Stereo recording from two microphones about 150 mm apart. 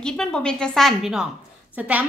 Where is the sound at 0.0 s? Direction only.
5° left (ahead or behind).